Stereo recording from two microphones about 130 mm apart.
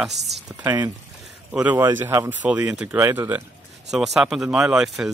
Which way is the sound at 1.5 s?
10° right (ahead or behind).